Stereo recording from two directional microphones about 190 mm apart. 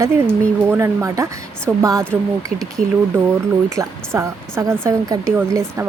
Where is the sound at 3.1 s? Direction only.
10° right (ahead or behind).